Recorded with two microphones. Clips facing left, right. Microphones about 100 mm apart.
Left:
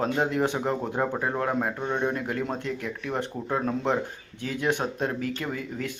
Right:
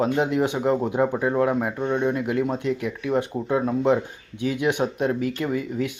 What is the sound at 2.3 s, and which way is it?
Speech, 15° right (ahead or behind).